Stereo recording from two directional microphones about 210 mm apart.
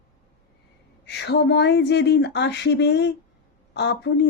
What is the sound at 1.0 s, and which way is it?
A woman's voice, 55° left (ahead or behind).